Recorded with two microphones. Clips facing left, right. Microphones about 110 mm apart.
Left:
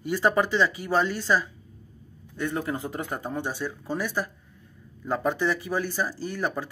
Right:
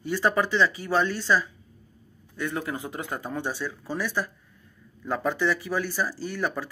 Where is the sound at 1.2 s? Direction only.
35° left (ahead or behind).